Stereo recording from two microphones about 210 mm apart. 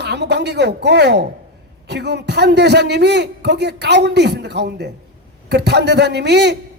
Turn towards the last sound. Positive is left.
turn(degrees=-55)  # may be behind; listen again after turning